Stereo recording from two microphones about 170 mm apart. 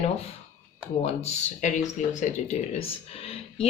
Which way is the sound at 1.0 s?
40° left (ahead or behind).